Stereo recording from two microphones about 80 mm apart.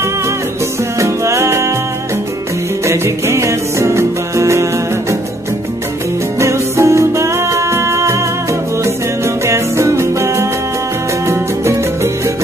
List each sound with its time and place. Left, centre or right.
0.9 s music: right
2.8 s music: right
6.4 s music: right